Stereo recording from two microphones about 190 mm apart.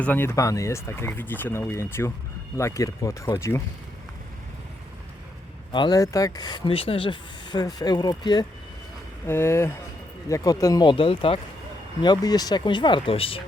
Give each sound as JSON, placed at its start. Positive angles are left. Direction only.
{"t": 0.0, "sound": "speech", "side_deg": 10}
{"t": 5.7, "sound": "speech", "side_deg": 20}
{"t": 9.2, "sound": "speech", "side_deg": 10}